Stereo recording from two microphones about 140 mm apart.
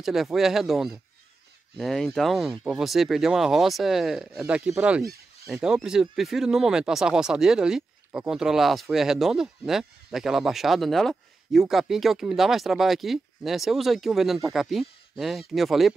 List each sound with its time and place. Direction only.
0.0 s speech: centre (ahead or behind)
5.0 s a sound: 90° right
5.5 s speech: 5° right (ahead or behind)